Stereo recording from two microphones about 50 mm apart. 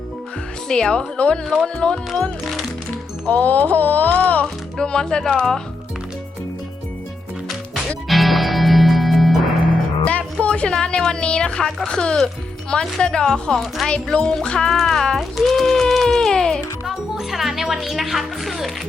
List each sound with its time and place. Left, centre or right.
0.7 s speech: centre
2.4 s speech: centre
3.2 s speech: left
4.8 s speech: centre
8.0 s music: centre
10.0 s music: left
10.4 s a sound: left
11.9 s speech: centre
14.1 s music: centre
16.8 s speech: centre